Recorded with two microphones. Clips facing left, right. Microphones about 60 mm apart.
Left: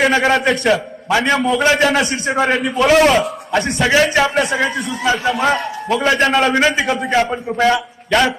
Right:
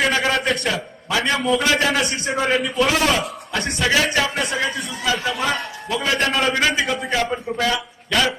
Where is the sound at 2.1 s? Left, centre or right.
Left.